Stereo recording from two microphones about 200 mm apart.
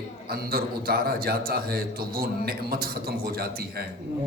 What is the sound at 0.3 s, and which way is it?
A man's voice, 50° right (ahead or behind).